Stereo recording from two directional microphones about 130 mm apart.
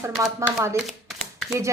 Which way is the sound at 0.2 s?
25° right (ahead or behind).